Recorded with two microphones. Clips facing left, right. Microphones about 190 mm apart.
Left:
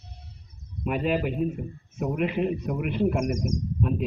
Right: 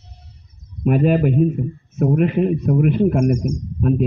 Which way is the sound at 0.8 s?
45° right (ahead or behind).